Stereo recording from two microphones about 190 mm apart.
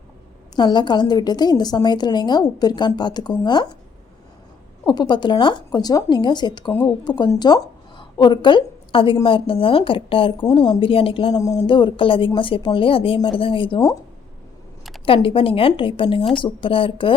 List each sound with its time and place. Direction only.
0.5 s a woman's voice: 25° left (ahead or behind)
4.9 s a woman's voice: 20° left (ahead or behind)
15.0 s a woman's voice: 30° left (ahead or behind)